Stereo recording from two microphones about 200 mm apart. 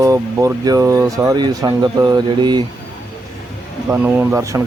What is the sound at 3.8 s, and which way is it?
Speech, 10° right (ahead or behind).